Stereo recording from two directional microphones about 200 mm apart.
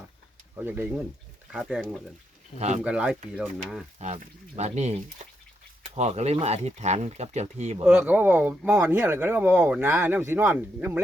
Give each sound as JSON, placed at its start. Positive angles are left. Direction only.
{"t": 0.5, "sound": "speech", "side_deg": -10}
{"t": 2.6, "sound": "speech", "side_deg": -35}
{"t": 2.8, "sound": "speech", "side_deg": -5}
{"t": 3.9, "sound": "speech", "side_deg": -35}
{"t": 7.9, "sound": "speech", "side_deg": -10}